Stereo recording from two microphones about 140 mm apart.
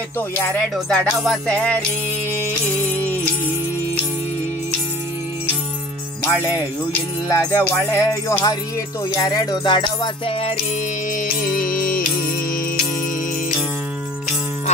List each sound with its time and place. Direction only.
0.7 s music: centre (ahead or behind)
7.2 s music: 15° left (ahead or behind); by 10.5 s 35° left (ahead or behind)
11.1 s music: 80° left